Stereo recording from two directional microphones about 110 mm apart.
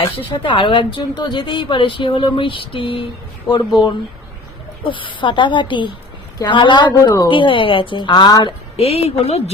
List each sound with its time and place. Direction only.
0.3 s a woman's voice: 45° left (ahead or behind)
8.7 s a woman's voice: 65° left (ahead or behind)